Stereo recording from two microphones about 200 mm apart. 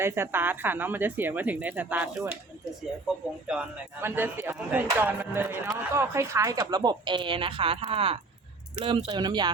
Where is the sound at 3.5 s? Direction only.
10° right (ahead or behind).